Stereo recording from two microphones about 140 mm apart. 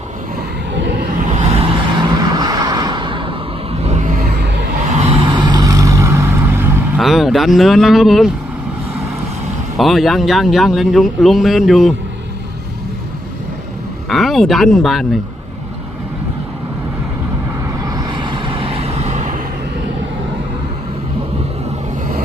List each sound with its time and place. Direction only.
1.3 s vehicle: 55° right (ahead or behind)
2.0 s vehicle: 30° right (ahead or behind); by 4.4 s 75° right (ahead or behind)
4.9 s vehicle: 45° right (ahead or behind); by 7.0 s 15° right (ahead or behind)
7.0 s speech: centre (ahead or behind)
9.7 s speech: centre (ahead or behind)
14.1 s speech: centre (ahead or behind)
17.9 s vehicle: 30° right (ahead or behind); by 19.4 s 60° right (ahead or behind)